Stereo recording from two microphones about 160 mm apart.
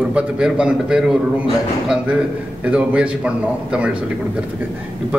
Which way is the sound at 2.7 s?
5° right (ahead or behind).